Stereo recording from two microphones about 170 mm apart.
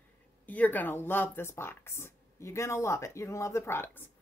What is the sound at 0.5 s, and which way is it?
A woman's voice, 10° left (ahead or behind).